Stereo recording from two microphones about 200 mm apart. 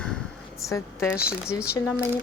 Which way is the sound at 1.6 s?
5° right (ahead or behind).